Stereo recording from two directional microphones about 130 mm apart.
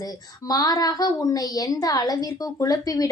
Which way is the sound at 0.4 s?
30° left (ahead or behind).